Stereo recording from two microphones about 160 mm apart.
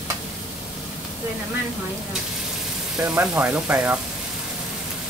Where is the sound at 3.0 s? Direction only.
10° right (ahead or behind).